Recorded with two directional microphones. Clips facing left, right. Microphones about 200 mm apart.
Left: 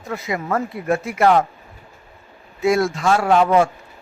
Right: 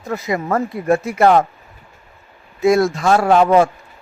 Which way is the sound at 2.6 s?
40° right (ahead or behind).